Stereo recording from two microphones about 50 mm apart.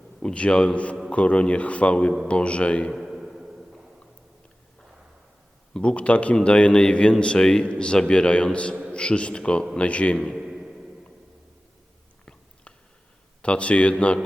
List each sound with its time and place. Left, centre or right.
0.2 s a man's voice: centre
2.9 s a sound: centre
5.7 s a man's voice: left
10.3 s a sound: centre
12.2 s chewing: left
13.4 s a man's voice: left